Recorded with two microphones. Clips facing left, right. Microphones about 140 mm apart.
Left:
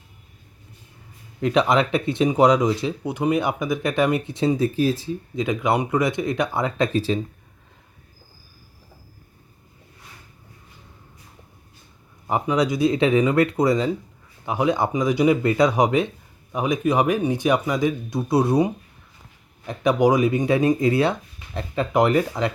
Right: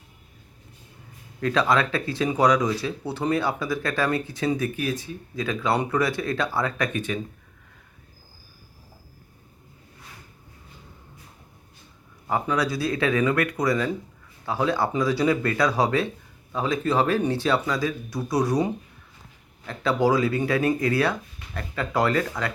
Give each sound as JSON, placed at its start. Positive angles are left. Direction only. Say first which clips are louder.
{"t": 1.4, "sound": "speech", "louder": "left 3 dB", "side_deg": 20}
{"t": 12.3, "sound": "speech", "louder": "left 3 dB", "side_deg": 20}